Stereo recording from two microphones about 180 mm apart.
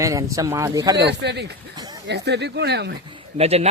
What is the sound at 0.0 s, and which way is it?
Speech, 15° right (ahead or behind).